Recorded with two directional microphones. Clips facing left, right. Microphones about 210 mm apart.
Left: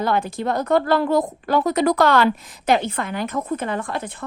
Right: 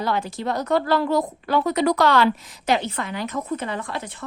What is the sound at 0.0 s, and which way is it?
A woman's voice, 55° left (ahead or behind).